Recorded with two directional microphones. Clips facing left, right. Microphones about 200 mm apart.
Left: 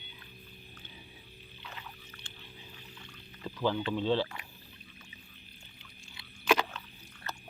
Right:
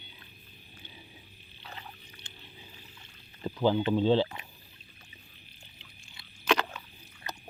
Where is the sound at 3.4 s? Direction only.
25° right (ahead or behind).